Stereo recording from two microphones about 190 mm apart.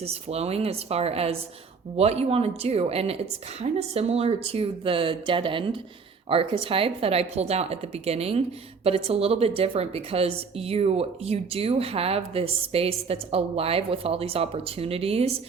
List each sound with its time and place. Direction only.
0.0 s a woman's voice: 35° right (ahead or behind)